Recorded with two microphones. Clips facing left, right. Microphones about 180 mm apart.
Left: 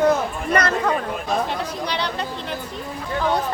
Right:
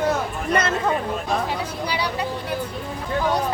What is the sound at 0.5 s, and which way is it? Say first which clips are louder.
Speech: left 1 dB; 25° right (ahead or behind).